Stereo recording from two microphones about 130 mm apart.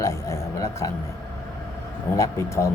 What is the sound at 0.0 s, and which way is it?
Speech, 25° left (ahead or behind).